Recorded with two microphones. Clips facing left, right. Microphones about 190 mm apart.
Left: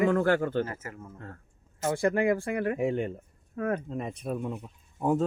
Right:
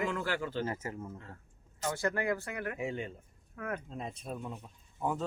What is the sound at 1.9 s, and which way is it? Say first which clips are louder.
Speech: left 8 dB; 25° left (ahead or behind).